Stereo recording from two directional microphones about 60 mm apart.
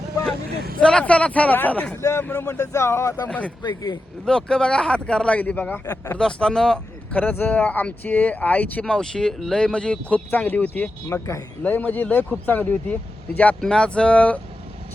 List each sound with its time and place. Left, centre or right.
0.8 s speech: centre
2.0 s speech: left
2.2 s speech: left
2.6 s speech: left
3.2 s speech: left
6.1 s speech: centre
7.1 s speech: left
8.9 s speech: centre
10.3 s speech: left
11.1 s speech: left
11.6 s speech: left
13.6 s speech: centre